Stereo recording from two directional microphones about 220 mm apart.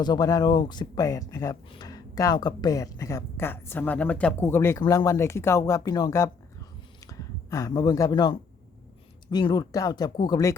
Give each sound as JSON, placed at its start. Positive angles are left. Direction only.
{"t": 0.0, "sound": "speech", "side_deg": 20}